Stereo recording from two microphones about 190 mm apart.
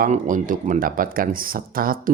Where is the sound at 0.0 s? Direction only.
45° right (ahead or behind).